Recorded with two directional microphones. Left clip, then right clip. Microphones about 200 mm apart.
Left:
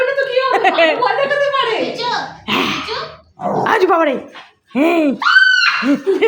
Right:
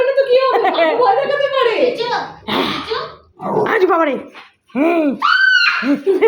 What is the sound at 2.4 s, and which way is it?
Throat clearing, 15° left (ahead or behind).